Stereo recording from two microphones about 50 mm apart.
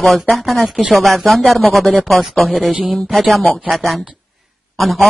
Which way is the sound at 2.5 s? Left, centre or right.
Right.